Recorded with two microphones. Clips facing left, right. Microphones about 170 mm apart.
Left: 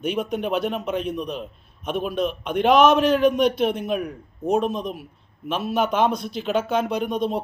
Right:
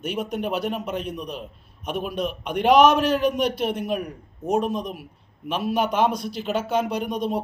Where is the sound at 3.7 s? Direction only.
10° right (ahead or behind).